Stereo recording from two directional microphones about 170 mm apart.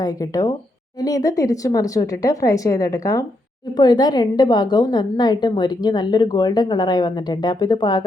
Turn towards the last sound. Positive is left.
turn(degrees=25)  # may be behind; listen again after turning